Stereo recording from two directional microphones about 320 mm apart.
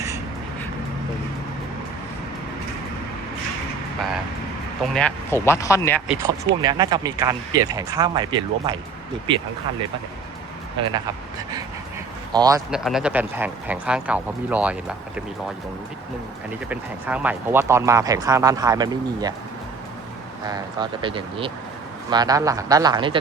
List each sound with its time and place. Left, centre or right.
4.8 s speech: centre
6.1 s speech: centre
12.3 s speech: centre
16.6 s speech: centre
20.5 s speech: centre